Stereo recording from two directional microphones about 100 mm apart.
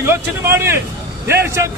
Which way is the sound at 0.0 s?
25° right (ahead or behind).